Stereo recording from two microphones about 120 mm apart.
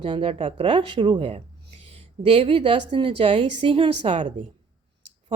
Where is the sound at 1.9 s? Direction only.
50° right (ahead or behind).